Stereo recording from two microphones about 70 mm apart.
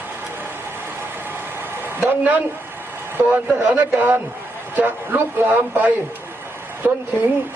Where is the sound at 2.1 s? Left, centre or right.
Right.